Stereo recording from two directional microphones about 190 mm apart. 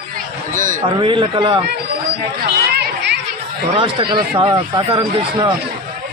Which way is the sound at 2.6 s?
60° right (ahead or behind).